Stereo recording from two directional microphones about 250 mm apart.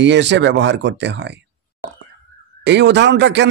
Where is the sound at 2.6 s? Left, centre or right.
Right.